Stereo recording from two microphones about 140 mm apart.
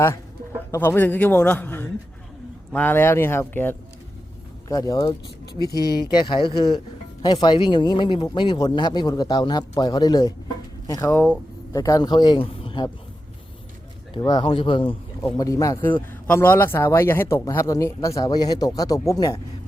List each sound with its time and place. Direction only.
0.7 s a man's voice: 15° left (ahead or behind)
4.7 s speech: 25° left (ahead or behind)
14.2 s speech: 30° left (ahead or behind)
15.9 s speech: 10° left (ahead or behind)